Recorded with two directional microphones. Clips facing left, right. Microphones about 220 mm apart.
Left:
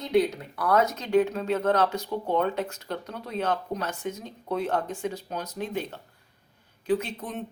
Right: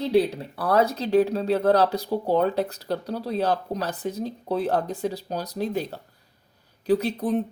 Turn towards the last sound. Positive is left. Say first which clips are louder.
# right 9 dB
turn(degrees=-35)  # may be behind; listen again after turning